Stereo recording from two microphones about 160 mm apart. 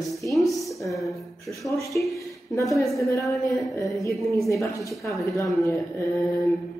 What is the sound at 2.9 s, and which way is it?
Speech, 20° left (ahead or behind).